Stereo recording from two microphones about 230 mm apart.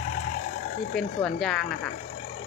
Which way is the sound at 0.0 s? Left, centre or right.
Left.